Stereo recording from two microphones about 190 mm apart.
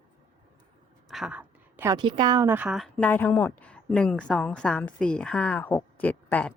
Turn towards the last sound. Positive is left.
turn(degrees=10)  # may be behind; listen again after turning